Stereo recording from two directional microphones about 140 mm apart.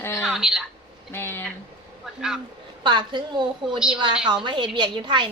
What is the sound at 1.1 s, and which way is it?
Speech, 15° left (ahead or behind).